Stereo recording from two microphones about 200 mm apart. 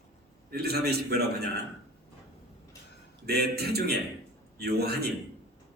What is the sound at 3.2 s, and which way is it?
A man's voice, 55° right (ahead or behind).